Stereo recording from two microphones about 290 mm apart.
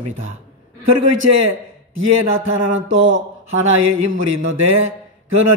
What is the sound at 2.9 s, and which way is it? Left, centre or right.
Speech, right.